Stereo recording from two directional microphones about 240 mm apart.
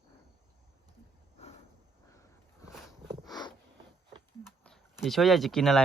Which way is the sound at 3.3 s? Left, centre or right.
Centre.